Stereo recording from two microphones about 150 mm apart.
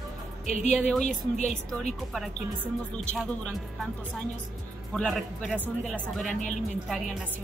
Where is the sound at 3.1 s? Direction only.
Centre (ahead or behind).